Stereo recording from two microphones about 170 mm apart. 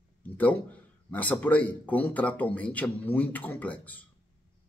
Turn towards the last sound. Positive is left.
turn(degrees=10)  # may be behind; listen again after turning